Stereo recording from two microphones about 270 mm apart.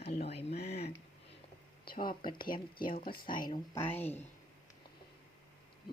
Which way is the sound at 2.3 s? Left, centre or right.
Left.